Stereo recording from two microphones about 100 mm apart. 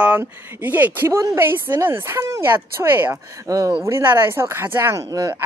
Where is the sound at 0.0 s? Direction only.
15° right (ahead or behind).